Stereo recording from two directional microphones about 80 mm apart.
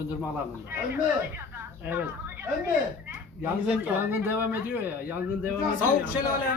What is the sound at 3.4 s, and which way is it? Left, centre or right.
Speech, right.